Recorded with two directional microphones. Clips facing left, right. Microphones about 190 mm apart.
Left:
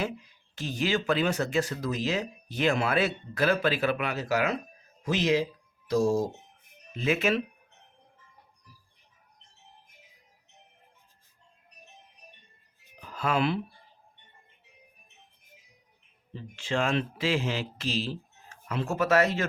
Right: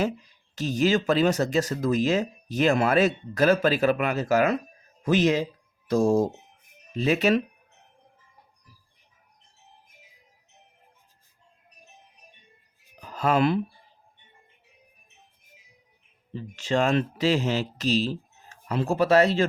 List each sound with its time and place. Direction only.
0.5 s speech: 40° right (ahead or behind)
6.9 s speech: 40° right (ahead or behind)
13.0 s music: 40° right (ahead or behind)
16.3 s speech: 40° right (ahead or behind)